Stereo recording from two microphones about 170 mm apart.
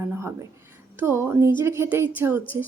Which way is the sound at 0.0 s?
15° right (ahead or behind).